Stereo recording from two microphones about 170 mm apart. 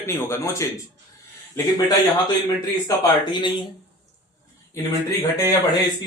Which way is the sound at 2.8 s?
25° left (ahead or behind).